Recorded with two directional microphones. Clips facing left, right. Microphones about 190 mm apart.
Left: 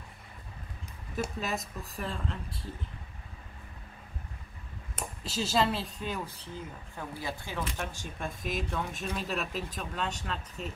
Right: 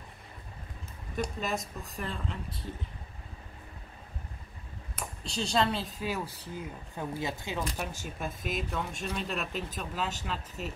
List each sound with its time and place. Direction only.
1.1 s speech: centre (ahead or behind)
5.2 s speech: 5° left (ahead or behind); by 7.6 s 20° right (ahead or behind)
7.7 s speech: 5° right (ahead or behind)